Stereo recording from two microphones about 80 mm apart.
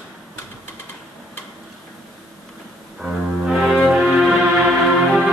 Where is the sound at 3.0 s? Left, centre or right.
Centre.